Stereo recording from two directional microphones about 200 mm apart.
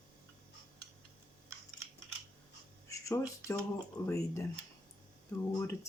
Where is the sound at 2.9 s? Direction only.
15° left (ahead or behind).